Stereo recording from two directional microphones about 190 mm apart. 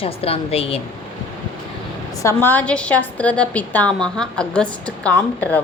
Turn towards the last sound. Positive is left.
turn(degrees=5)  # may be behind; listen again after turning